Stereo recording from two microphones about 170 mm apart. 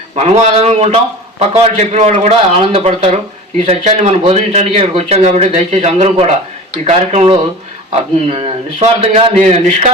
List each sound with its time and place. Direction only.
0.2 s speech: 35° right (ahead or behind)